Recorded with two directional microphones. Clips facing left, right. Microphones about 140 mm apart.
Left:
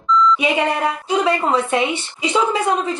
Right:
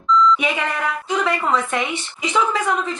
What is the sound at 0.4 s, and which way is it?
A woman's voice, 25° left (ahead or behind).